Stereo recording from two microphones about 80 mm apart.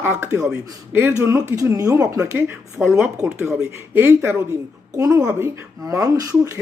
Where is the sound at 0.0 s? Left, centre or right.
Right.